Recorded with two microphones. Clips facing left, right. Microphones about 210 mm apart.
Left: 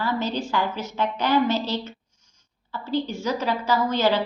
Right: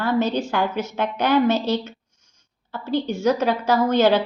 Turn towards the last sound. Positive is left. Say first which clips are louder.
# right 4 dB
turn(degrees=-60)  # may be behind; listen again after turning